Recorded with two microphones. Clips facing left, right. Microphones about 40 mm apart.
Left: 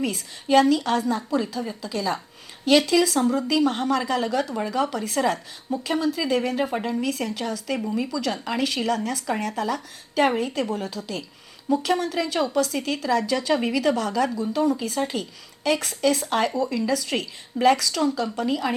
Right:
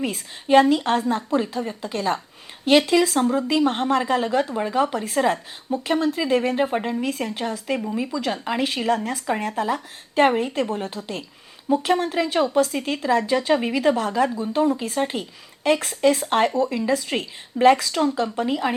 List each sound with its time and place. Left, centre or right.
0.0 s a woman's voice: right